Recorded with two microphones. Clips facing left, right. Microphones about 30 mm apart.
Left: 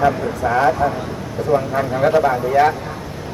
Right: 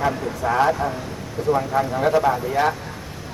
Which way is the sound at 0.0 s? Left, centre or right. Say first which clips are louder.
Left 5 dB; centre.